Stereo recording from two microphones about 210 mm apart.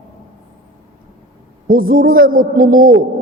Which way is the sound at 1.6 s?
40° right (ahead or behind).